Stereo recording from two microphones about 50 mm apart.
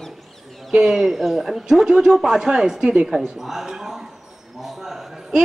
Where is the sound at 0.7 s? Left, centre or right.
Centre.